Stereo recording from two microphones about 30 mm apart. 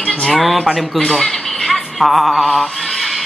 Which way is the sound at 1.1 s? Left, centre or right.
Centre.